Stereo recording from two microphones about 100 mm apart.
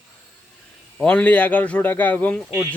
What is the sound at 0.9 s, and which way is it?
Speech, 15° left (ahead or behind).